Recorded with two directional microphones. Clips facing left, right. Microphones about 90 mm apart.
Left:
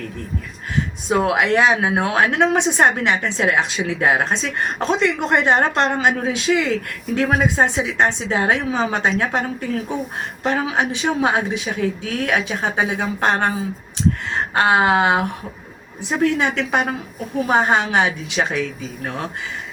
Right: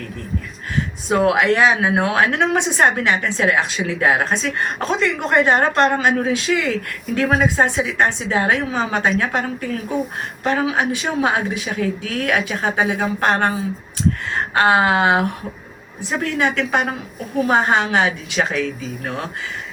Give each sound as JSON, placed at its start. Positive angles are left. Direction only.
{"t": 1.1, "sound": "a woman's voice", "side_deg": 20}
{"t": 10.4, "sound": "a woman's voice", "side_deg": 20}
{"t": 14.6, "sound": "a woman's voice", "side_deg": 20}